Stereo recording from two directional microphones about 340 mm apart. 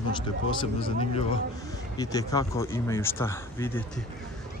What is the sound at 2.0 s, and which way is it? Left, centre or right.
Speech, centre.